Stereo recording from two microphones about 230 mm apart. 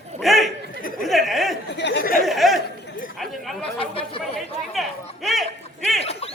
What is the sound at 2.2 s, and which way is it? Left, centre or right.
Speech, centre.